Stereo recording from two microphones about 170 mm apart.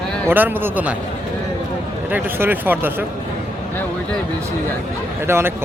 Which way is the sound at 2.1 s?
10° right (ahead or behind).